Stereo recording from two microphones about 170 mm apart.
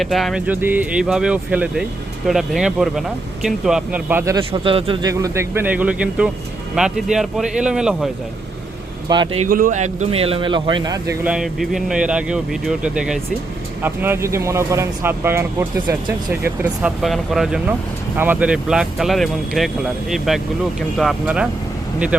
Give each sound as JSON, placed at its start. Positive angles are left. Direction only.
{"t": 0.0, "sound": "speech", "side_deg": 0}
{"t": 4.3, "sound": "speech", "side_deg": -30}
{"t": 5.1, "sound": "speech", "side_deg": -15}
{"t": 9.0, "sound": "speech", "side_deg": -25}
{"t": 9.5, "sound": "speech", "side_deg": -55}
{"t": 11.3, "sound": "speech", "side_deg": -5}
{"t": 16.8, "sound": "speech", "side_deg": 0}